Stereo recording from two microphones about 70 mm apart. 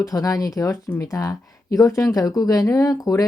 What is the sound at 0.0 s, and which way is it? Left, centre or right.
Speech, left.